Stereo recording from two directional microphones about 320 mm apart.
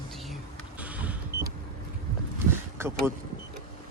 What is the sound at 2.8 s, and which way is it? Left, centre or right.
Speech, centre.